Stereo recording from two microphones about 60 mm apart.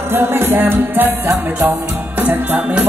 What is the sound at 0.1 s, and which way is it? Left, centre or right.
Music, right.